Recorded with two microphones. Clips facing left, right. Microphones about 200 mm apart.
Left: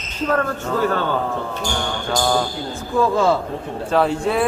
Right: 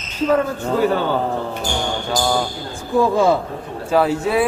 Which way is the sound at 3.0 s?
15° right (ahead or behind).